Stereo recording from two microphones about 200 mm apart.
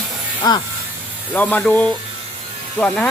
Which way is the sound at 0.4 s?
20° left (ahead or behind).